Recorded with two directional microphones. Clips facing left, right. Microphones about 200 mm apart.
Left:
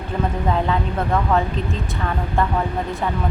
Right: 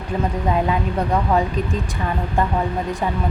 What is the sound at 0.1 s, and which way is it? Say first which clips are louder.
Speech: right 1 dB; 10° right (ahead or behind).